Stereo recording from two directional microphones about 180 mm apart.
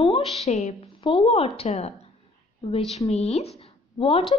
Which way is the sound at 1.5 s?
35° left (ahead or behind).